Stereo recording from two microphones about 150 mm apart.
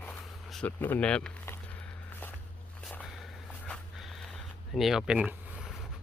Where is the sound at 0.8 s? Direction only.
10° left (ahead or behind).